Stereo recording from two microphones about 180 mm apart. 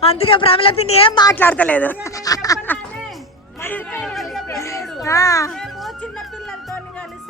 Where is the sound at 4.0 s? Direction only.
Centre (ahead or behind).